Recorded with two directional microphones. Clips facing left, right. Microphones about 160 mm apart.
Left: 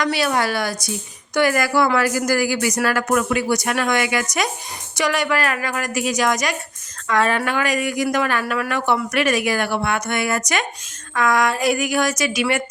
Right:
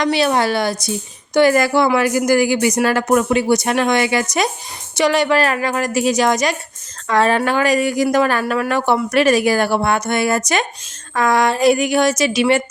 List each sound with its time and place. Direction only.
0.0 s a woman's voice: 25° right (ahead or behind)